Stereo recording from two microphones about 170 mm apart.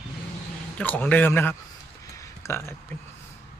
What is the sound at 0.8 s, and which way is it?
Speech, 10° left (ahead or behind).